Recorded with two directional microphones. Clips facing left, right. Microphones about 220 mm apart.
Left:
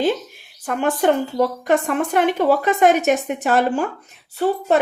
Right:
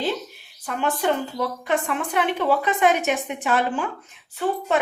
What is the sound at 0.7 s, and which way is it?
A woman's voice, 50° left (ahead or behind).